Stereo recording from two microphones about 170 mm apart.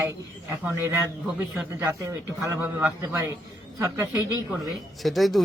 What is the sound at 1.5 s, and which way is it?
A man's voice, 15° right (ahead or behind).